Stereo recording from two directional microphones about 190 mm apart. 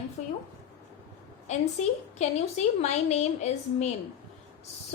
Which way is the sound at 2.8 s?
35° left (ahead or behind).